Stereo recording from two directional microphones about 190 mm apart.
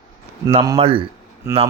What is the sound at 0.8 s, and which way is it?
Speech, 30° right (ahead or behind).